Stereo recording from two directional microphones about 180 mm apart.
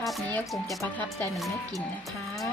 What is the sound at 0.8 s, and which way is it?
Speech, 10° left (ahead or behind).